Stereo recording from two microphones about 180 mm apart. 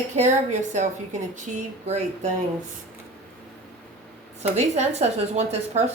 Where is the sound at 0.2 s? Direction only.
40° right (ahead or behind).